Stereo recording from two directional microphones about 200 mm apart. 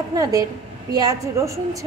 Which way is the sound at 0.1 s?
20° right (ahead or behind).